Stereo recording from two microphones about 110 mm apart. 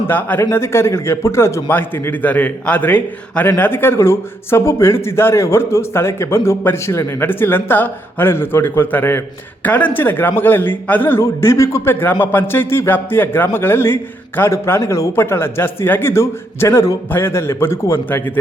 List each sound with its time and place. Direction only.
0.1 s speech: 15° left (ahead or behind)